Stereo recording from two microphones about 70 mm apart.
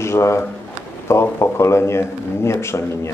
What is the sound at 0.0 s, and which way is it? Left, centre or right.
A man's voice, left.